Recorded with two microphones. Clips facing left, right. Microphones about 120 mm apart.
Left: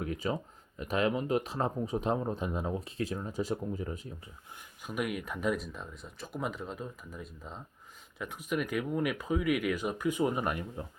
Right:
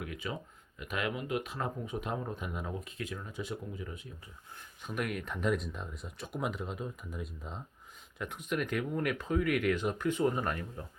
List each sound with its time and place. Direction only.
0.0 s speech: 35° left (ahead or behind)
4.8 s speech: 5° left (ahead or behind)